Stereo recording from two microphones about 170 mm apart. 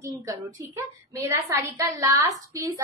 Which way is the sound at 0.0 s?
20° right (ahead or behind).